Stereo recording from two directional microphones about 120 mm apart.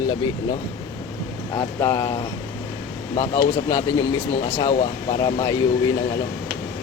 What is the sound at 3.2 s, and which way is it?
Speech, 25° left (ahead or behind).